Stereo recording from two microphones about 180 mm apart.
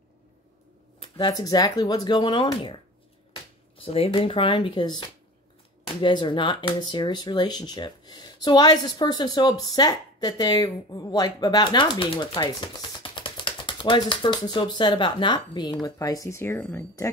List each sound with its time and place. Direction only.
0.9 s speech: 30° left (ahead or behind)
3.8 s speech: 30° left (ahead or behind)
5.9 s speech: 25° left (ahead or behind)